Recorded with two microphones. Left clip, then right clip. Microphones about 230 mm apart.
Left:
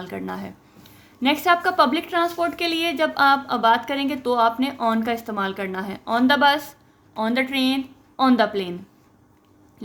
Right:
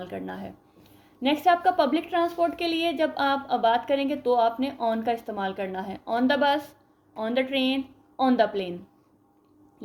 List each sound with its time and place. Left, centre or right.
0.0 s a woman's voice: left
7.3 s a woman's voice: left
8.2 s a woman's voice: left